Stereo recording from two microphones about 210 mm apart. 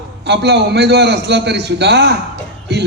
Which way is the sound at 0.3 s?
55° right (ahead or behind).